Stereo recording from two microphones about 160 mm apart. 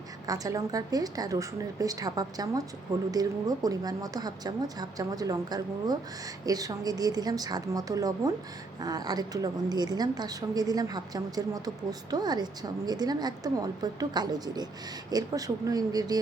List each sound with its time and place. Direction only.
0.3 s a woman's voice: 20° right (ahead or behind)